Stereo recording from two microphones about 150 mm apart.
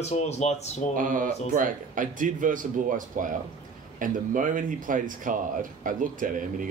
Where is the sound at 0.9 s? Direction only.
60° right (ahead or behind).